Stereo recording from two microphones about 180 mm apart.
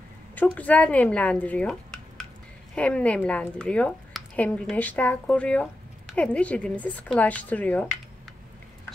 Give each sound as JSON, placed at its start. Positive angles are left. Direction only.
{"t": 0.4, "sound": "speech", "side_deg": 10}